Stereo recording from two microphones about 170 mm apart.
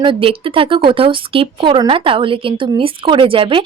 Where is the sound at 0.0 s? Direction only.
30° right (ahead or behind).